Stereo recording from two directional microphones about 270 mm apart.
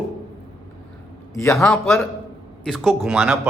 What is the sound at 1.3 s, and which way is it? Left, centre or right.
Speech, centre.